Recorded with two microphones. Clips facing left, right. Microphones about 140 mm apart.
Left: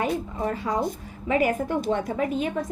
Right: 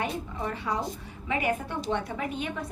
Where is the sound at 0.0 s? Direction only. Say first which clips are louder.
Left 5 dB; 40° left (ahead or behind).